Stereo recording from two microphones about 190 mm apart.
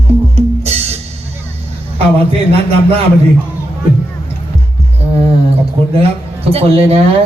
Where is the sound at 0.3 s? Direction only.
35° right (ahead or behind).